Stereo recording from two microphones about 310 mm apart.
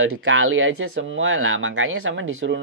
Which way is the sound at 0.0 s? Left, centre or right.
Right.